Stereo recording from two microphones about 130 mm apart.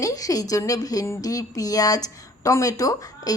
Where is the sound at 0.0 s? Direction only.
25° left (ahead or behind).